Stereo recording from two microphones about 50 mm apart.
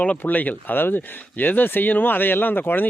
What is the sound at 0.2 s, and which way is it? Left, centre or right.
Speech, left.